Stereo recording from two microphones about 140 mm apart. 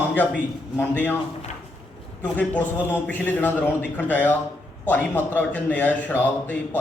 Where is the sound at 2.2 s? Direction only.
10° left (ahead or behind).